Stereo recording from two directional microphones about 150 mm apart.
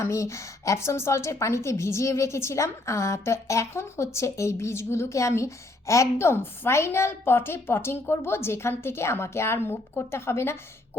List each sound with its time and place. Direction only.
0.0 s a woman's voice: 20° left (ahead or behind)